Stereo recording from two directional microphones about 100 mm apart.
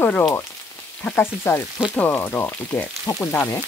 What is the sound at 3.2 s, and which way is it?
Frying, 15° left (ahead or behind).